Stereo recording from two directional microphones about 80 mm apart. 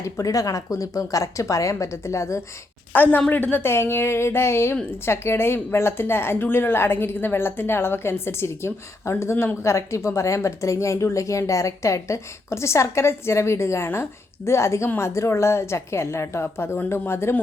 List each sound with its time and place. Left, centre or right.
0.0 s a woman's voice: left
2.9 s a woman's voice: left